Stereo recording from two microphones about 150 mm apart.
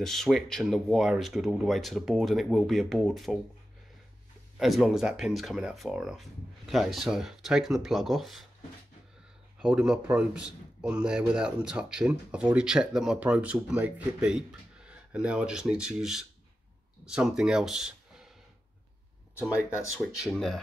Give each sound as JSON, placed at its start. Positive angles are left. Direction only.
{"t": 0.0, "sound": "speech", "side_deg": 5}
{"t": 4.6, "sound": "speech", "side_deg": 0}
{"t": 9.6, "sound": "a man's voice", "side_deg": -5}
{"t": 20.2, "sound": "speech", "side_deg": 0}